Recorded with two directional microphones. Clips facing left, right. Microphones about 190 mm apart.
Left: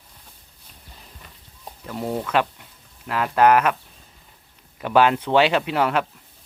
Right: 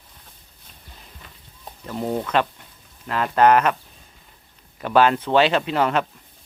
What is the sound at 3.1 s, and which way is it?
Speech, 5° left (ahead or behind).